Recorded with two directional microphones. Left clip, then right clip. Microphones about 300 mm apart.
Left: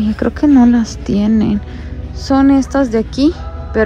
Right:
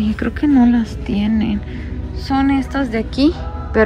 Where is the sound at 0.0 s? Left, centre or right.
Centre.